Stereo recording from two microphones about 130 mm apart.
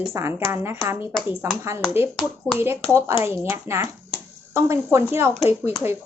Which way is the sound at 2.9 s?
20° right (ahead or behind).